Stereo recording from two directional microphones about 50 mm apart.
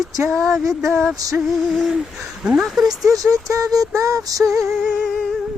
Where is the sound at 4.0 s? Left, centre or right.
Right.